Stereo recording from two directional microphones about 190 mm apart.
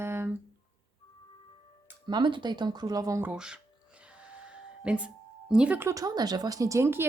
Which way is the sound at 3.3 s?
5° right (ahead or behind).